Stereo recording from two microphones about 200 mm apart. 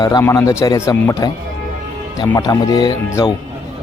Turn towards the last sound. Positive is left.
turn(degrees=15)  # may be behind; listen again after turning